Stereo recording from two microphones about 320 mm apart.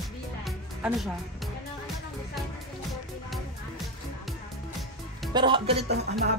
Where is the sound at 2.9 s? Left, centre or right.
Centre.